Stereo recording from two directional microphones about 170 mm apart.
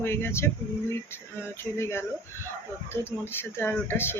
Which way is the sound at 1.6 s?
15° left (ahead or behind).